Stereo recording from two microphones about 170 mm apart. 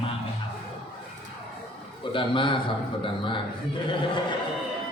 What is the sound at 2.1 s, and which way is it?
A man's voice, 30° left (ahead or behind).